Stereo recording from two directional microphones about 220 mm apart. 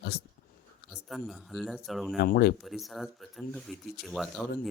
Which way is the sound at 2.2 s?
45° left (ahead or behind).